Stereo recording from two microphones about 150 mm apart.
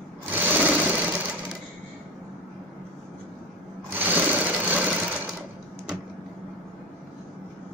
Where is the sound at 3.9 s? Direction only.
10° right (ahead or behind).